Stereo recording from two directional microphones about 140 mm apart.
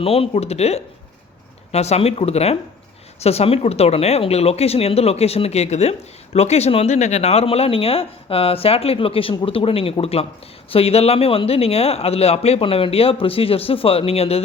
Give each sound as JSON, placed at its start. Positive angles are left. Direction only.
{"t": 0.0, "sound": "speech", "side_deg": 45}